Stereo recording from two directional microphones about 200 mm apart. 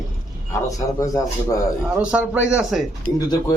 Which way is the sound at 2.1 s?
5° right (ahead or behind).